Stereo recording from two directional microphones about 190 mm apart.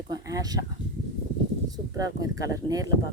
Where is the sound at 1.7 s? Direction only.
20° right (ahead or behind).